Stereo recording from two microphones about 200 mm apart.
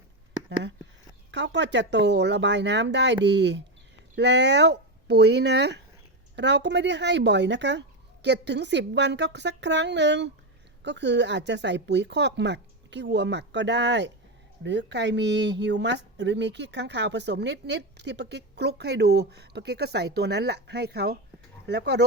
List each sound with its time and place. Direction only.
1.3 s speech: 60° right (ahead or behind)